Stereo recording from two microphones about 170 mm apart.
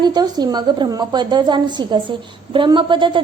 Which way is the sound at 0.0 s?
25° right (ahead or behind).